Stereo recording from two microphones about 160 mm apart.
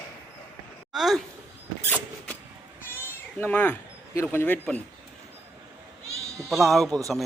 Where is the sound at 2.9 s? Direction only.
10° left (ahead or behind).